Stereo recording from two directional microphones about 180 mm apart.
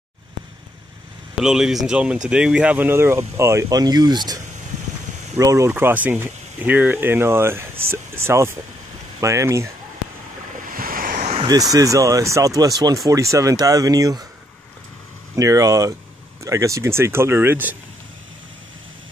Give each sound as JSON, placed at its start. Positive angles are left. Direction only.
{"t": 1.4, "sound": "speech", "side_deg": -5}
{"t": 5.4, "sound": "speech", "side_deg": -15}
{"t": 10.6, "sound": "waves", "side_deg": -50}
{"t": 11.3, "sound": "speech", "side_deg": -20}
{"t": 15.3, "sound": "speech", "side_deg": -20}